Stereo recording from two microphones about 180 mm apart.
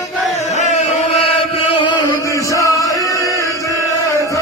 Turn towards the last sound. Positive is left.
turn(degrees=20)  # may be behind; listen again after turning